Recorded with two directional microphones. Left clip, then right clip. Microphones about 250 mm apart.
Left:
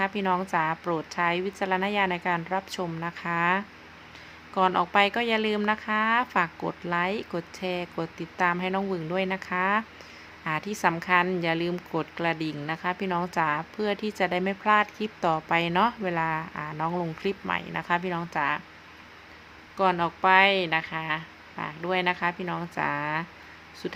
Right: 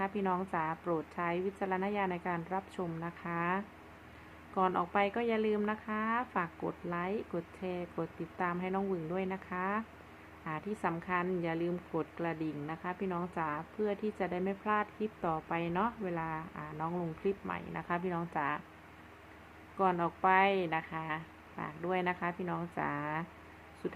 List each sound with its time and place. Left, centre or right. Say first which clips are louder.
0.0 s a woman's voice: left 8 dB; left
19.7 s a woman's voice: left 7 dB; centre